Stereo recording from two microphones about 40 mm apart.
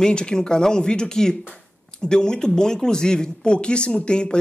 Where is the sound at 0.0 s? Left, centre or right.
Centre.